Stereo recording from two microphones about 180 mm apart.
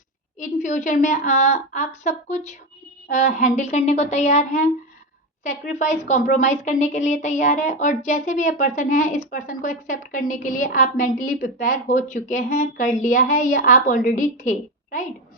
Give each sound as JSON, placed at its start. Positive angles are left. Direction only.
{"t": 0.3, "sound": "a woman's voice", "side_deg": 45}